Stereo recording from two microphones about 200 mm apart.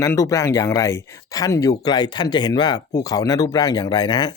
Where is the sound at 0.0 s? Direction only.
15° left (ahead or behind).